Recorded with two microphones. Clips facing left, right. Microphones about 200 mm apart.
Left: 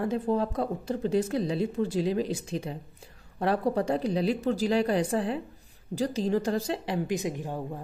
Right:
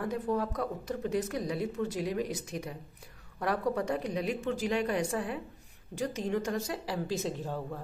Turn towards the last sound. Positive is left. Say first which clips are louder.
# left 2 dB
turn(degrees=15)  # may be behind; listen again after turning